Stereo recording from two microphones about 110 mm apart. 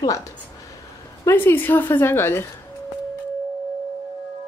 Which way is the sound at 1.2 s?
20° left (ahead or behind).